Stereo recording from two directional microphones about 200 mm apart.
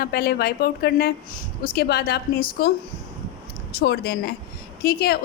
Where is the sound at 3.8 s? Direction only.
55° left (ahead or behind).